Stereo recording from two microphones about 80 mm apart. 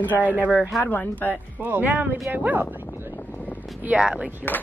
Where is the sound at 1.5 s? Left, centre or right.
Right.